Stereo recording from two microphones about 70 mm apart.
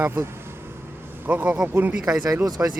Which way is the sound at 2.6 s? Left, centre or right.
Right.